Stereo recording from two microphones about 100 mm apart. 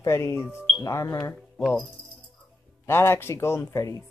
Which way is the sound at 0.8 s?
35° left (ahead or behind).